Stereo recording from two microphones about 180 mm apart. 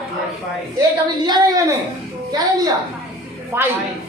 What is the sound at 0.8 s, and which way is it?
A woman's voice, 20° right (ahead or behind).